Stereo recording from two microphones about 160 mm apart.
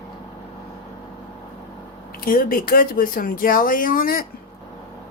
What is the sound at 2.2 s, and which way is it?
Speech, 65° left (ahead or behind).